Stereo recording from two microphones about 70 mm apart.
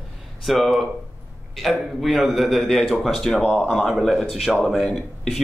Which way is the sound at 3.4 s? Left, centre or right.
Centre.